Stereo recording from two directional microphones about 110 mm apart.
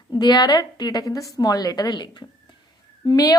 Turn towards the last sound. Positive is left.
turn(degrees=40)  # may be behind; listen again after turning